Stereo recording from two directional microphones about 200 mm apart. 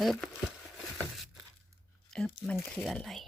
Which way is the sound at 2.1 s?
5° left (ahead or behind).